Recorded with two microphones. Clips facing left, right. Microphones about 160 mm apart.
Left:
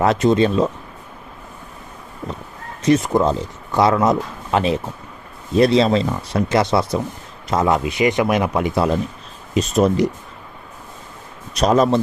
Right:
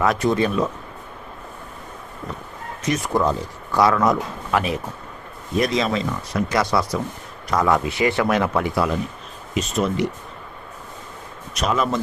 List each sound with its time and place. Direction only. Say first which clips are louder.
0.0 s speech: left 4 dB; 25° left (ahead or behind)
2.8 s speech: left 5 dB; 25° left (ahead or behind)
9.6 s speech: left 6 dB; 40° left (ahead or behind)
11.5 s speech: left 7 dB; 35° left (ahead or behind)